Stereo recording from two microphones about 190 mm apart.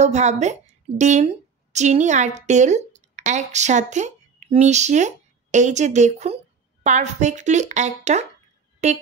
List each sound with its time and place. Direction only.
0.0 s a woman's voice: 35° right (ahead or behind)